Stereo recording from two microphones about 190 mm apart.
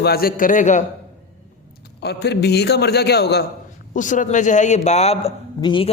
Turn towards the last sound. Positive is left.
turn(degrees=25)  # may be behind; listen again after turning